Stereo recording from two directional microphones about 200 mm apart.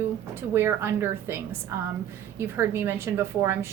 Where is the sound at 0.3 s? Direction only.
10° right (ahead or behind).